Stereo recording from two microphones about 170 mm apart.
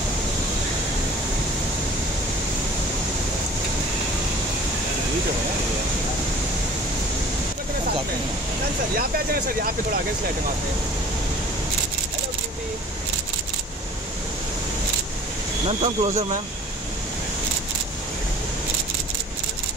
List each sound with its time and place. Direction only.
8.9 s speech: 60° right (ahead or behind)
15.8 s speech: 35° right (ahead or behind)